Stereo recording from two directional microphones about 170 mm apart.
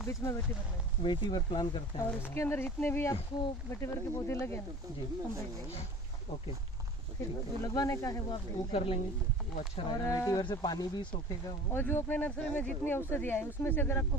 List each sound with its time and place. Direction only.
0.0 s speech: 20° left (ahead or behind)
2.0 s speech: 15° left (ahead or behind)
7.2 s speech: 20° left (ahead or behind)
8.7 s a woman's voice: 35° left (ahead or behind)
9.7 s speech: 20° left (ahead or behind)
11.7 s speech: 15° left (ahead or behind)